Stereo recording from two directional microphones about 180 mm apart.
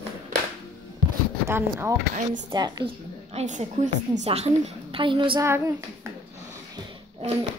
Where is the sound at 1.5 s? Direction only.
15° right (ahead or behind).